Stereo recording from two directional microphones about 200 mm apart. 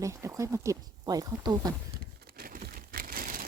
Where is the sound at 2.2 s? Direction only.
45° right (ahead or behind).